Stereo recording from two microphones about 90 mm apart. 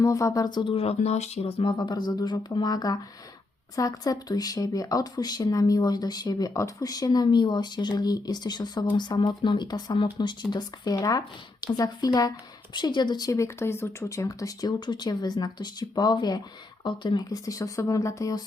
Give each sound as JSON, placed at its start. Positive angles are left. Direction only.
{"t": 0.0, "sound": "speech", "side_deg": 35}
{"t": 0.4, "sound": "speech", "side_deg": 55}
{"t": 0.7, "sound": "speech", "side_deg": 90}
{"t": 1.5, "sound": "speech", "side_deg": 80}
{"t": 6.5, "sound": "speech", "side_deg": 35}
{"t": 14.3, "sound": "speech", "side_deg": 40}
{"t": 16.8, "sound": "speech", "side_deg": 60}
{"t": 17.2, "sound": "speech", "side_deg": 40}